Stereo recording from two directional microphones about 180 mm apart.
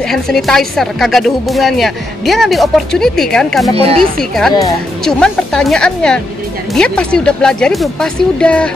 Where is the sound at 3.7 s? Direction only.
35° right (ahead or behind).